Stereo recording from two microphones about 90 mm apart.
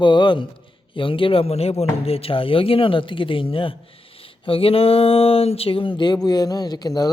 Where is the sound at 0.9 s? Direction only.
75° left (ahead or behind).